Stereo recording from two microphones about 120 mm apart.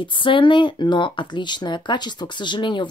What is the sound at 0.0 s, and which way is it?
Speech, 45° left (ahead or behind).